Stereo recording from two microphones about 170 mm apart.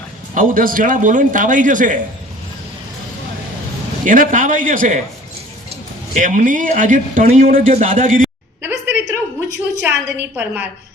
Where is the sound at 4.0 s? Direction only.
50° right (ahead or behind).